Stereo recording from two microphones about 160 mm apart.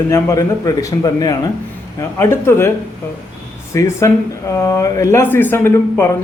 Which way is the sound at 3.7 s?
20° left (ahead or behind).